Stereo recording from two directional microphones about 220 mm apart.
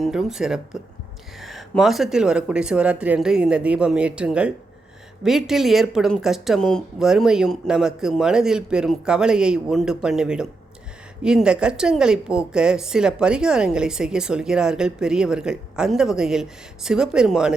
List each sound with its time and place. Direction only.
0.0 s a woman's voice: centre (ahead or behind)